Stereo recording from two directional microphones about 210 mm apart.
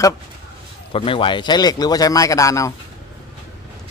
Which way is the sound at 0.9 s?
25° left (ahead or behind).